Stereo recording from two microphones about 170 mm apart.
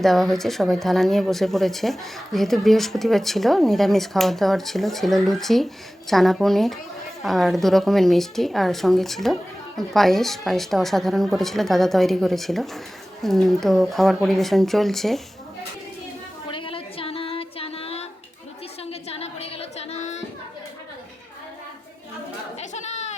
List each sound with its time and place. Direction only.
0.0 s speech: centre (ahead or behind)
16.5 s child singing: 30° left (ahead or behind)
18.8 s a sound: 35° left (ahead or behind)
22.6 s goat: 45° left (ahead or behind)